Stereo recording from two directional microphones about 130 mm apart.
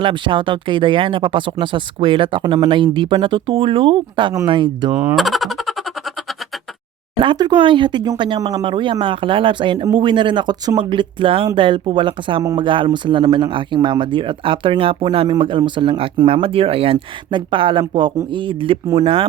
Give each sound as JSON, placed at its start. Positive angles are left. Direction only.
{"t": 0.0, "sound": "speech", "side_deg": -40}
{"t": 5.1, "sound": "a sound", "side_deg": 0}
{"t": 7.2, "sound": "speech", "side_deg": -35}